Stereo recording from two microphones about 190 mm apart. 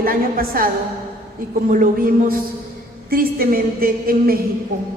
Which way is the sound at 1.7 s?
45° right (ahead or behind).